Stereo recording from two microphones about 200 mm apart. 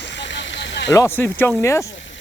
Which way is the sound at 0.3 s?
60° left (ahead or behind).